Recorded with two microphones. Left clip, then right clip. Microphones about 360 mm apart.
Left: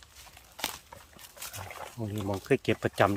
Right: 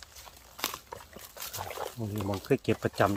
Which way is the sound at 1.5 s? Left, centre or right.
Right.